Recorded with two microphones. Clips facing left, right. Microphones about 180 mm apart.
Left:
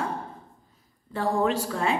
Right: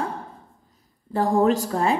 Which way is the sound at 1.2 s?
40° right (ahead or behind).